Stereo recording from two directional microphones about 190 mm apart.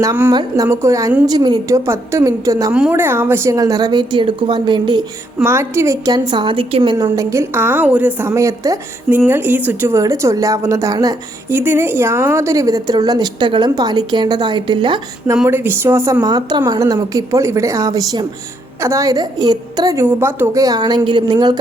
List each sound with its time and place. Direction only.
0.0 s a woman's voice: 20° right (ahead or behind)
15.4 s a woman's voice: 10° right (ahead or behind)